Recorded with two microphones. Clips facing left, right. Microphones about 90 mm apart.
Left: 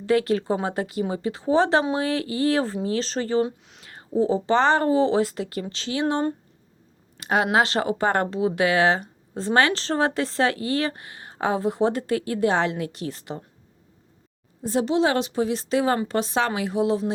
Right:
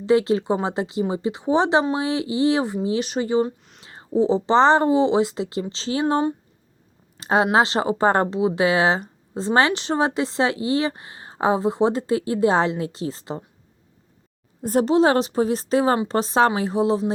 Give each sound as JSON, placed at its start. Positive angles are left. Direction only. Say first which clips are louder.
{"t": 0.0, "sound": "speech", "louder": "right 3 dB", "side_deg": -20}
{"t": 3.4, "sound": "speech", "louder": "right 1 dB", "side_deg": 0}
{"t": 3.8, "sound": "speech", "louder": "right 2 dB", "side_deg": -25}
{"t": 7.2, "sound": "speech", "louder": "right 3 dB", "side_deg": -25}
{"t": 14.6, "sound": "a woman's voice", "louder": "right 4 dB", "side_deg": -45}